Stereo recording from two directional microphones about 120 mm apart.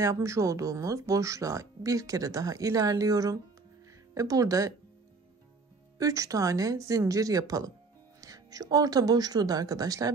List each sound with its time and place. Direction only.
0.0 s speech: 25° right (ahead or behind)
5.9 s a woman's voice: 30° right (ahead or behind)